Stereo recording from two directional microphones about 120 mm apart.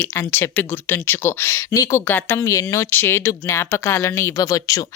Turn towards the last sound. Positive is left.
turn(degrees=30)  # may be behind; listen again after turning